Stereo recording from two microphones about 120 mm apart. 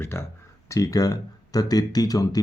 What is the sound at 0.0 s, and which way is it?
Speech, 20° left (ahead or behind).